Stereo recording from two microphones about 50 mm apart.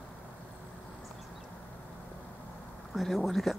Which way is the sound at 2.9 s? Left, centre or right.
Centre.